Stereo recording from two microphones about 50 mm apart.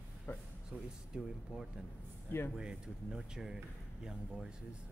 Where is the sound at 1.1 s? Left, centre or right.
Centre.